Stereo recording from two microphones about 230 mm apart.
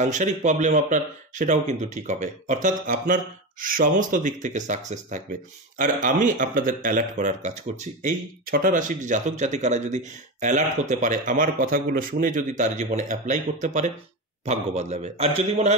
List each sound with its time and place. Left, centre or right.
0.0 s a man's voice: right